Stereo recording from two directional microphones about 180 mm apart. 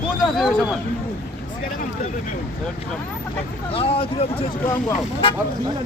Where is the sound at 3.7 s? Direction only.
30° left (ahead or behind).